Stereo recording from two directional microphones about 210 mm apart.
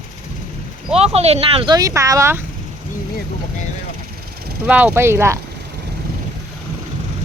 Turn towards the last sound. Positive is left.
turn(degrees=-10)  # may be behind; listen again after turning